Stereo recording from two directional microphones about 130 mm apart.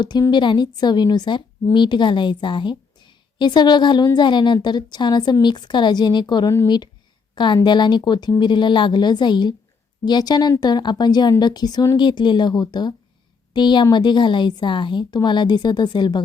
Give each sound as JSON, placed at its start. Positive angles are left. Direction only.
{"t": 0.0, "sound": "a woman's voice", "side_deg": 35}